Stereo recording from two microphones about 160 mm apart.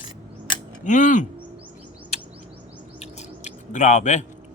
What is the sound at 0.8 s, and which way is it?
Speech, 50° left (ahead or behind).